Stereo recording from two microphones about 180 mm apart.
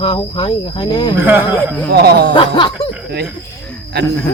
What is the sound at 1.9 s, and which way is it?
Cricket, 60° right (ahead or behind).